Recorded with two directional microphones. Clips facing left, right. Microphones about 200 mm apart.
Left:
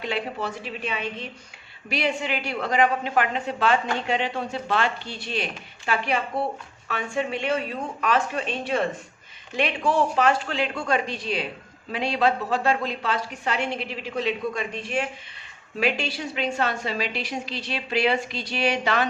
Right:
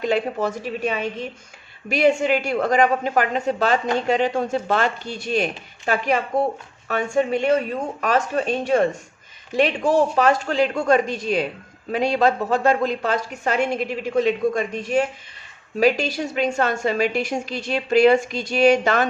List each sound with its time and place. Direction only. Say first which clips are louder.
0.0 s a woman's voice: right 7 dB; 45° right (ahead or behind)